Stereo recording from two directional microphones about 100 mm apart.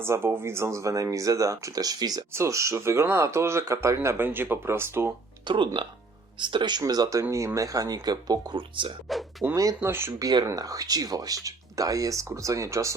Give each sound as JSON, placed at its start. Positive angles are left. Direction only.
{"t": 0.0, "sound": "speech", "side_deg": -25}
{"t": 2.3, "sound": "speech", "side_deg": -30}
{"t": 5.5, "sound": "speech", "side_deg": -55}
{"t": 8.5, "sound": "speech", "side_deg": -55}
{"t": 9.6, "sound": "speech", "side_deg": -30}
{"t": 10.2, "sound": "speech", "side_deg": -40}